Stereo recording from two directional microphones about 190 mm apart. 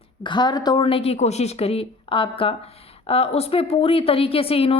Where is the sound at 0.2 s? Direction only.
25° left (ahead or behind).